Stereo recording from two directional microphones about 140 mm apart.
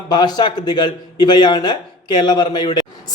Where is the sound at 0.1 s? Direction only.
30° left (ahead or behind).